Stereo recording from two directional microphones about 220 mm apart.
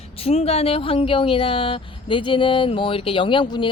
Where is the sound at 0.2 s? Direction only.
25° left (ahead or behind).